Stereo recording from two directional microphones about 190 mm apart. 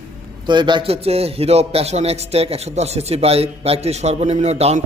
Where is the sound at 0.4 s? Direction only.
25° right (ahead or behind).